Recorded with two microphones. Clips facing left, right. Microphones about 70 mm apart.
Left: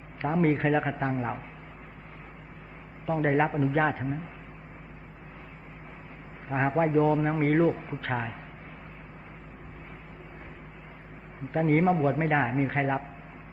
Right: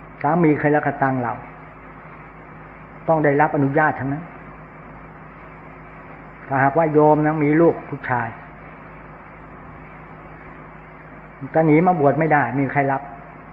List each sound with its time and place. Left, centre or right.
0.2 s a man's voice: right
3.1 s a man's voice: right
6.5 s a man's voice: right
11.5 s a man's voice: right
12.4 s a man's voice: right